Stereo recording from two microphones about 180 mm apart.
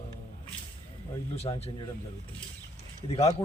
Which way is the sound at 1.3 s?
35° left (ahead or behind).